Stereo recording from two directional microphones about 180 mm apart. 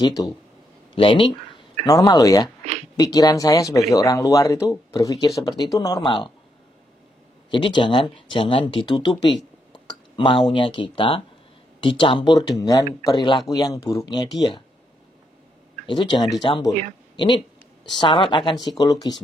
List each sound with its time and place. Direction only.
0.0 s speech: 20° left (ahead or behind)
2.6 s a sound: 40° right (ahead or behind)
3.0 s speech: 20° left (ahead or behind)
7.5 s speech: 25° left (ahead or behind)
10.1 s speech: 30° left (ahead or behind)
15.9 s speech: 25° left (ahead or behind)
17.8 s speech: 25° left (ahead or behind)